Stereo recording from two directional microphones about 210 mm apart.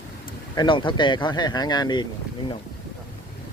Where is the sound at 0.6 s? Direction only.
25° left (ahead or behind).